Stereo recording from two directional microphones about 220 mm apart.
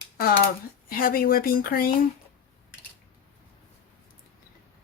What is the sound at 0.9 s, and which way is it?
Speech, 40° left (ahead or behind).